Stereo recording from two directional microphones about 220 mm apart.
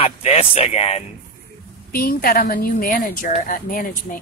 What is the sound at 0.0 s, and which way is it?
Music, 25° left (ahead or behind).